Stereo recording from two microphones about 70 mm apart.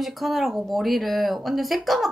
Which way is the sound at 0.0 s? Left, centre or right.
Centre.